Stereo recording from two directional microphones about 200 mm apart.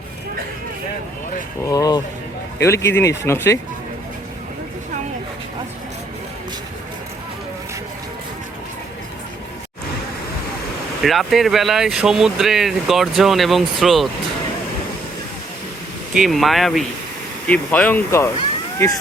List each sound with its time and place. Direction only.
1.6 s speech: 20° left (ahead or behind)
11.0 s speech: centre (ahead or behind)
16.1 s speech: centre (ahead or behind)